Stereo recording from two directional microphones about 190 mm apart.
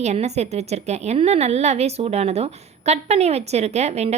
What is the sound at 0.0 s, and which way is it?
A woman's voice, 35° right (ahead or behind).